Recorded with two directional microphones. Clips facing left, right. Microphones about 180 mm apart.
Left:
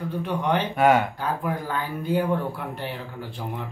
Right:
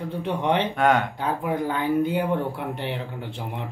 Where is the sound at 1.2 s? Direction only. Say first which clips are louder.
Right 2 dB; 20° right (ahead or behind).